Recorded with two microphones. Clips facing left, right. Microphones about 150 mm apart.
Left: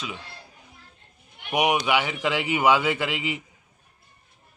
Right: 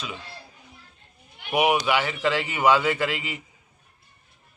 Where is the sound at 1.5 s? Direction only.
15° left (ahead or behind).